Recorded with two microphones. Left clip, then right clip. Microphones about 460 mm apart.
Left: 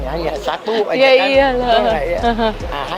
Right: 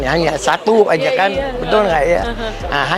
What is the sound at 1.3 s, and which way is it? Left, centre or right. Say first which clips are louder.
Speech: left 3 dB; left.